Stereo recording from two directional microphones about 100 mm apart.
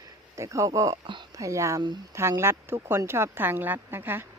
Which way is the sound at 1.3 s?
35° right (ahead or behind).